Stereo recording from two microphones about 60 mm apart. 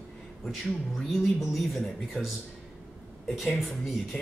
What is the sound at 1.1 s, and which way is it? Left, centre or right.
Speech, centre.